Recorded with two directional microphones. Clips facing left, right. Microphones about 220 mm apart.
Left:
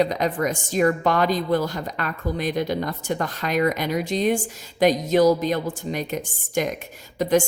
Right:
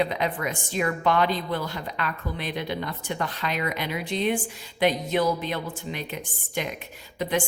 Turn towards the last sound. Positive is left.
turn(degrees=45)  # may be behind; listen again after turning